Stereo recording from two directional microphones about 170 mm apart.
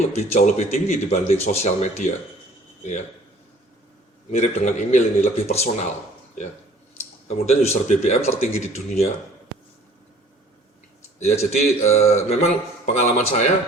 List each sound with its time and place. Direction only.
0.2 s a man's voice: 45° left (ahead or behind)
4.3 s a man's voice: 45° left (ahead or behind)
7.3 s a man's voice: 40° left (ahead or behind)
11.2 s a man's voice: 40° left (ahead or behind)